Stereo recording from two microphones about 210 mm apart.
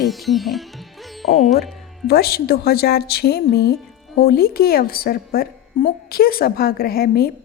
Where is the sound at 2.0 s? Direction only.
45° left (ahead or behind).